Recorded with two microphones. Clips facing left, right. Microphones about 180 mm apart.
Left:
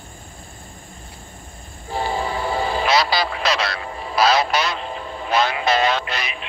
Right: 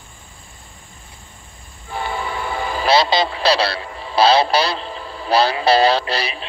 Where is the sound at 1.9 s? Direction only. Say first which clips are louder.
Left 2 dB; 35° left (ahead or behind).